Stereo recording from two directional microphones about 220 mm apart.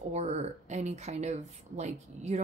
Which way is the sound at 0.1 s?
30° right (ahead or behind).